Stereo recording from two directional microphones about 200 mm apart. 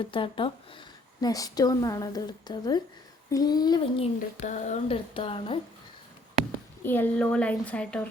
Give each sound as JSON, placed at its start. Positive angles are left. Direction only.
{"t": 0.0, "sound": "speech", "side_deg": 25}
{"t": 6.8, "sound": "a woman's voice", "side_deg": 10}